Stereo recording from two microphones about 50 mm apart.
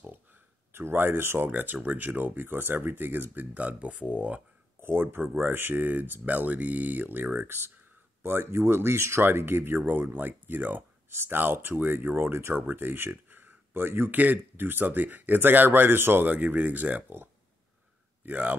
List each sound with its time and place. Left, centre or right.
0.0 s a sound: right
1.5 s speech: right
3.5 s speech: right
4.8 s speech: right
7.4 s speech: right
12.2 s speech: right
14.1 s speech: right
16.3 s speech: right
18.2 s speech: right